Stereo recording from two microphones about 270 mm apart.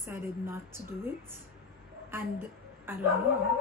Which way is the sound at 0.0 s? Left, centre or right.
Centre.